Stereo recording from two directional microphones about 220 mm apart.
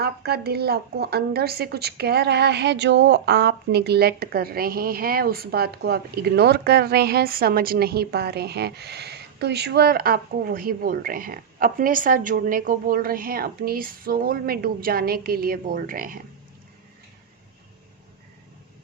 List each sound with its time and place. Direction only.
0.0 s a woman's voice: 45° right (ahead or behind)